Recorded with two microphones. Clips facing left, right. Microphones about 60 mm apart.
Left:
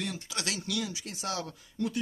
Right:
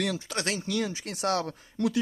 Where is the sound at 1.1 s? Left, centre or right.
Right.